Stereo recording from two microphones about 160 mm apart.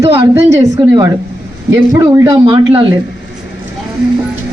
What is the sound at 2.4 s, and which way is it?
Speech, 35° right (ahead or behind).